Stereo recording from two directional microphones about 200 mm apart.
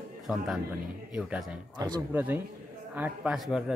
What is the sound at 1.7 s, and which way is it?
Speech, 20° right (ahead or behind).